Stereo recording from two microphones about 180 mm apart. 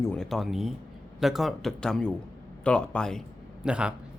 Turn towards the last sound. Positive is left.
turn(degrees=-5)  # may be behind; listen again after turning